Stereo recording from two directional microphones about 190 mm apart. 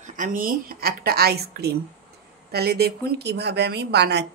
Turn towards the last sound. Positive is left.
turn(degrees=-60)  # may be behind; listen again after turning